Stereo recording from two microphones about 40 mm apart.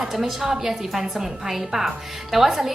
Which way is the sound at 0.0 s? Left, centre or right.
Centre.